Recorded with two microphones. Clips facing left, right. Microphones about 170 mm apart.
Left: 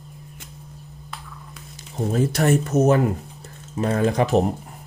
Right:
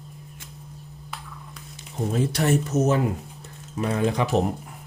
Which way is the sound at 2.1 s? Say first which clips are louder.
Left 3 dB; 50° left (ahead or behind).